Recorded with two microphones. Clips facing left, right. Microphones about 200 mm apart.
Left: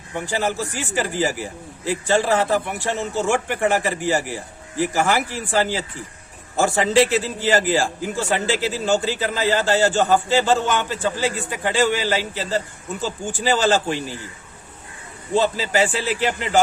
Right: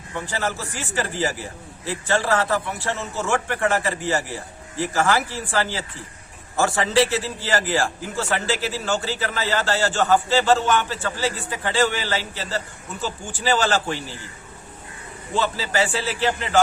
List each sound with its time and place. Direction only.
0.3 s a man's voice: 15° left (ahead or behind)
15.4 s a man's voice: 15° left (ahead or behind)